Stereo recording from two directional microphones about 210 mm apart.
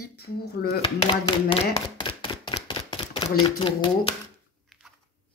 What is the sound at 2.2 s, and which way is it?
Camera, 25° left (ahead or behind).